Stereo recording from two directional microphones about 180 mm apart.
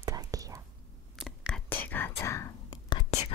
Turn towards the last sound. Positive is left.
turn(degrees=30)  # may be behind; listen again after turning